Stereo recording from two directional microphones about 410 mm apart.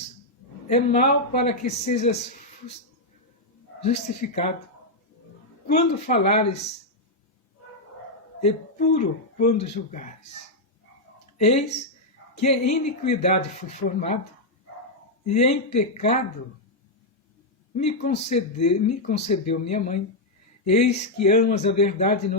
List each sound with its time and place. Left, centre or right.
0.7 s speech: centre
3.8 s speech: centre
5.6 s speech: centre
8.4 s speech: centre
11.3 s speech: centre
15.3 s speech: centre
17.7 s speech: centre
21.2 s speech: centre